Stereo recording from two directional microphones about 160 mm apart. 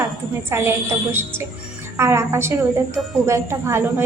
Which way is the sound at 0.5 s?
15° right (ahead or behind).